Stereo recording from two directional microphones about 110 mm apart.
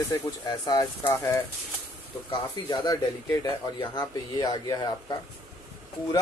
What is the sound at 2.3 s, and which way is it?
Speech, 45° left (ahead or behind).